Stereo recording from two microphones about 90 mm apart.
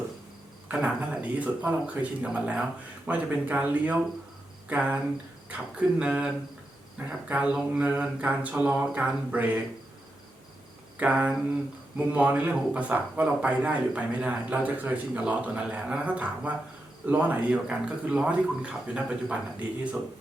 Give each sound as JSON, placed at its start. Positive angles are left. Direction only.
{"t": 0.7, "sound": "speech", "side_deg": -15}
{"t": 6.0, "sound": "speech", "side_deg": -15}
{"t": 11.0, "sound": "speech", "side_deg": -15}